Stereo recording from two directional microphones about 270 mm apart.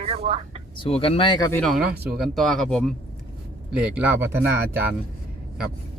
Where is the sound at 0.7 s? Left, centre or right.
Left.